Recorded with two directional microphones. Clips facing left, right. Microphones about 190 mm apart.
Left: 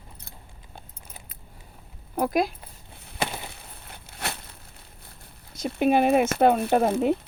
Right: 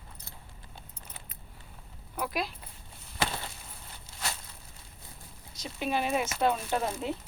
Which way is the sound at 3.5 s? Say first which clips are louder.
Left 4 dB; 60° left (ahead or behind).